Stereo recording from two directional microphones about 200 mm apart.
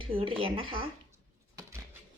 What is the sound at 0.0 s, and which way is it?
Speech, 25° right (ahead or behind).